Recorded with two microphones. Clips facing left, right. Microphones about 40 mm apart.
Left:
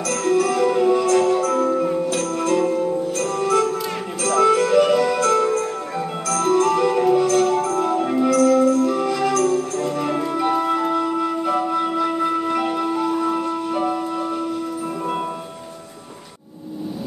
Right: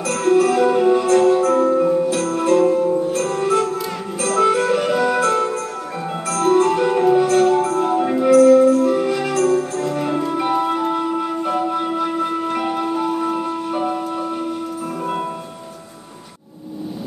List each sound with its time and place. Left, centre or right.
0.0 s music: right
2.0 s music: centre
2.2 s music: right
2.5 s music: centre
10.3 s music: centre